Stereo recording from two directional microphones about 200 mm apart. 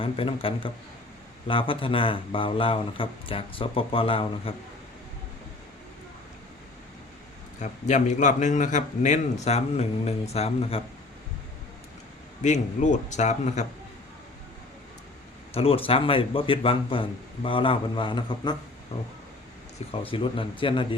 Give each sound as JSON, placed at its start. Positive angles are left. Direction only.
{"t": 0.0, "sound": "speech", "side_deg": 25}
{"t": 7.6, "sound": "a man's voice", "side_deg": 35}
{"t": 12.4, "sound": "a man's voice", "side_deg": 35}
{"t": 15.5, "sound": "a man's voice", "side_deg": 30}